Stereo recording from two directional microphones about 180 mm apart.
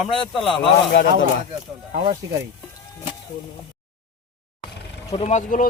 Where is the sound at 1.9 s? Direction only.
40° right (ahead or behind).